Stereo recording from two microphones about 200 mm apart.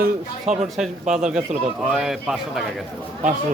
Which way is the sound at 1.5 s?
35° right (ahead or behind).